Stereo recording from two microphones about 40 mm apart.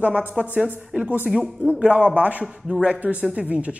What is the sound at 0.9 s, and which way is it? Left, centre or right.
Speech, right.